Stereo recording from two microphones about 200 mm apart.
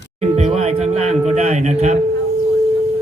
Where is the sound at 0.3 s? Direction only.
35° right (ahead or behind).